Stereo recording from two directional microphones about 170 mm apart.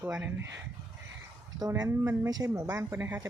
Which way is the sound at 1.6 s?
20° right (ahead or behind).